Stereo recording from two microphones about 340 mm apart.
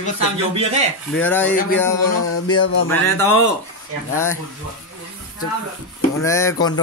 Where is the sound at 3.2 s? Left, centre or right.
Left.